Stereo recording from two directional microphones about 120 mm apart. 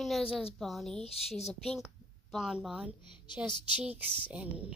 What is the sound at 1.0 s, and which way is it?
Speech, 55° left (ahead or behind).